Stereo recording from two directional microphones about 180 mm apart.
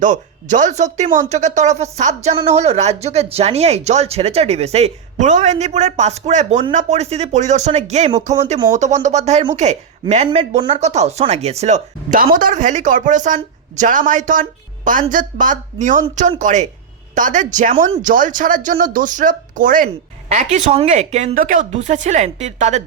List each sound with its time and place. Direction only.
0.0 s speech: 45° right (ahead or behind)